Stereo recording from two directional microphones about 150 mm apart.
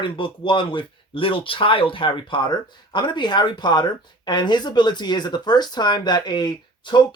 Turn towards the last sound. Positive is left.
turn(degrees=30)  # may be behind; listen again after turning